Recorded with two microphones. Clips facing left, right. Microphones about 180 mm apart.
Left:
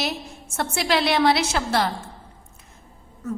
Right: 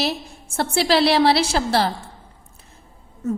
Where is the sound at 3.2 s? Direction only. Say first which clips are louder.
Right 5 dB; 25° right (ahead or behind).